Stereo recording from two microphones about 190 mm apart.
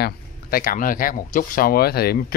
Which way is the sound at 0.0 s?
50° left (ahead or behind).